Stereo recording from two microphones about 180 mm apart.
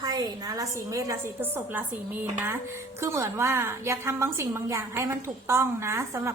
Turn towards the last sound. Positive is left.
turn(degrees=-15)  # may be behind; listen again after turning